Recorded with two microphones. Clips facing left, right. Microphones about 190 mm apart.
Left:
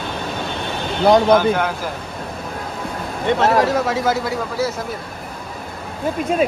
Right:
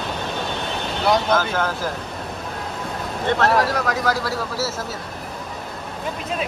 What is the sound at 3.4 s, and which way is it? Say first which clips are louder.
Speech: left 3 dB; 25° left (ahead or behind).